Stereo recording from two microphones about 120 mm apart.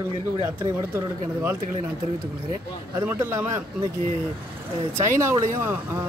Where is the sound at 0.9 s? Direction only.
20° right (ahead or behind).